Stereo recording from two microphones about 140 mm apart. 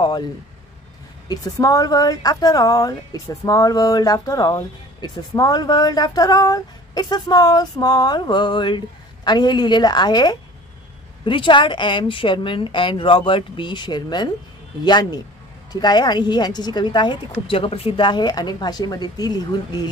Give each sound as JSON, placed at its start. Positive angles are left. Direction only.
{"t": 1.3, "sound": "a woman's voice", "side_deg": 25}